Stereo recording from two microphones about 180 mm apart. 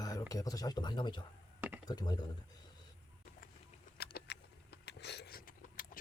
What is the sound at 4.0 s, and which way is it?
Keys jangling, 70° left (ahead or behind).